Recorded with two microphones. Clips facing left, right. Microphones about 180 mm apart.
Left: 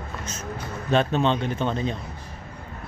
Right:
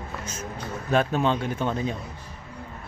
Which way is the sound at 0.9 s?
10° right (ahead or behind).